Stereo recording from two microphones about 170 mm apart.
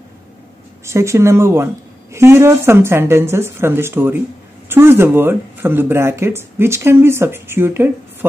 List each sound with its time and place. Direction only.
0.8 s speech: 15° right (ahead or behind)